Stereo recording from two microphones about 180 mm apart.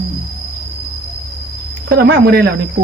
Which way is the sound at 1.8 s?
65° right (ahead or behind).